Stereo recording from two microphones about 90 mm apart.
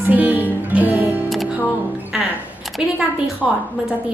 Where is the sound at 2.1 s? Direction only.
5° right (ahead or behind).